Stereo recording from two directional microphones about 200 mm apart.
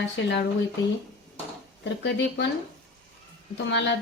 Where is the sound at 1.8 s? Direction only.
60° left (ahead or behind).